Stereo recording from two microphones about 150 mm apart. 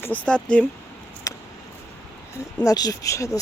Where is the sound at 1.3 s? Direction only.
25° left (ahead or behind).